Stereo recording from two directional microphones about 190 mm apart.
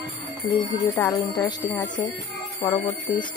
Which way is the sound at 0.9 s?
15° left (ahead or behind).